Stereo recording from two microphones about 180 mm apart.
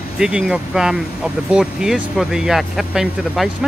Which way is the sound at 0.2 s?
5° right (ahead or behind).